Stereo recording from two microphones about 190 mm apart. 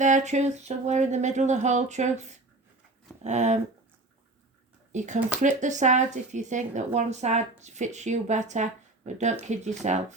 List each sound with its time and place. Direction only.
0.0 s speech: 40° right (ahead or behind)
4.9 s speech: 40° right (ahead or behind)